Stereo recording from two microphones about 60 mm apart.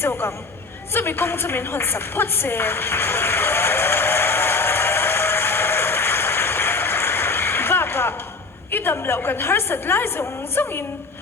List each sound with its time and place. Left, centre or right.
0.0 s speech: left
0.9 s a sound: left
8.7 s a woman's voice: left